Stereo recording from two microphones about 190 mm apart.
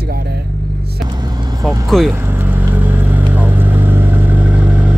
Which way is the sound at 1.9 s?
Centre (ahead or behind).